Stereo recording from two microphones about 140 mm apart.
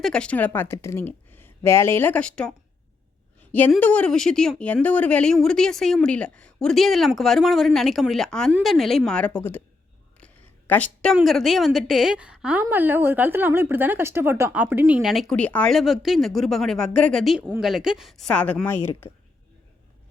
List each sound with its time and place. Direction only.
0.0 s a woman's voice: 5° left (ahead or behind)
3.8 s a woman's voice: 10° left (ahead or behind)
10.2 s a sound: 10° left (ahead or behind)
11.1 s a woman's voice: centre (ahead or behind)
15.4 s a woman's voice: 10° left (ahead or behind)